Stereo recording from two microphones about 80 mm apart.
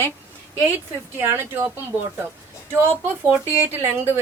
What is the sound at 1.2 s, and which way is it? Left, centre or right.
Speech, right.